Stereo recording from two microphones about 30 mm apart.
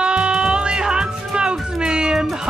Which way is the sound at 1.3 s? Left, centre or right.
Right.